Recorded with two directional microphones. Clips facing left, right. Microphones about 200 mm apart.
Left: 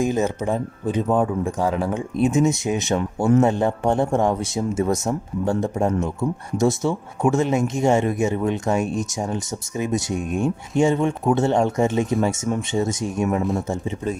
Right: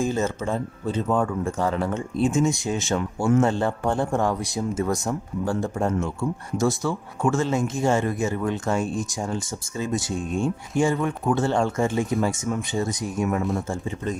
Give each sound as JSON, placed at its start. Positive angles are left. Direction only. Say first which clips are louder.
{"t": 0.0, "sound": "speech", "louder": "left 3 dB", "side_deg": 15}